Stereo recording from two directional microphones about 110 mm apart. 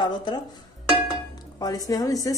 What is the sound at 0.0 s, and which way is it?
Speech, 40° left (ahead or behind).